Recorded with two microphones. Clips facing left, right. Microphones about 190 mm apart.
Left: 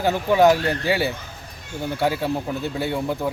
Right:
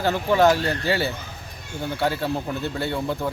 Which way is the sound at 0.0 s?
15° left (ahead or behind).